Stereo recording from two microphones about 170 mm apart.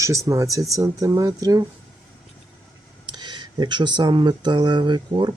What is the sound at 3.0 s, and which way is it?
Speech, 25° right (ahead or behind).